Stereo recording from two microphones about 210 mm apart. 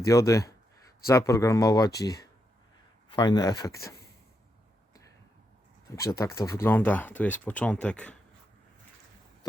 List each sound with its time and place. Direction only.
0.0 s speech: 15° left (ahead or behind)
3.1 s speech: 20° left (ahead or behind)
5.9 s speech: 15° left (ahead or behind)